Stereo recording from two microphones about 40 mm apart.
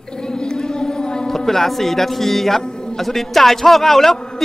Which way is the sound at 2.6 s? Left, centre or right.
Left.